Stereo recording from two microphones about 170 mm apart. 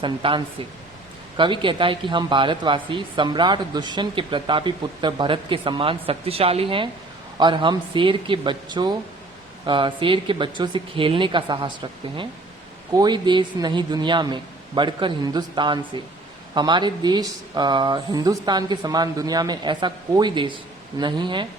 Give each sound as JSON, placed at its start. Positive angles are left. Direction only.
{"t": 0.0, "sound": "speech", "side_deg": -30}